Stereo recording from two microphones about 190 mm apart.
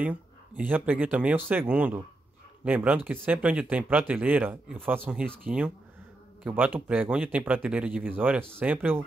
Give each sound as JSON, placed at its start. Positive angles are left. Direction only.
{"t": 0.0, "sound": "speech", "side_deg": -10}
{"t": 6.4, "sound": "speech", "side_deg": -10}